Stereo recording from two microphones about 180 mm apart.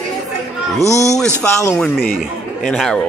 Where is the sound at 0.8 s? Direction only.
15° left (ahead or behind).